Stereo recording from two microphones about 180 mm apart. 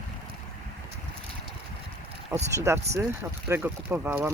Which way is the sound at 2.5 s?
15° right (ahead or behind).